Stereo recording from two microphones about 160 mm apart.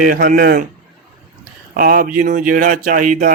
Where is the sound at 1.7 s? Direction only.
65° right (ahead or behind).